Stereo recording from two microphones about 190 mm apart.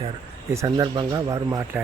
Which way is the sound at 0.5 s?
15° right (ahead or behind).